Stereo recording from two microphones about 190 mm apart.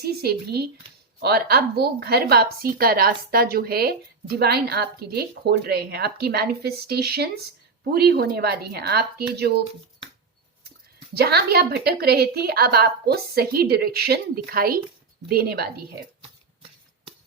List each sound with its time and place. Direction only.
0.0 s a woman's voice: 55° right (ahead or behind)
11.1 s speech: 60° right (ahead or behind)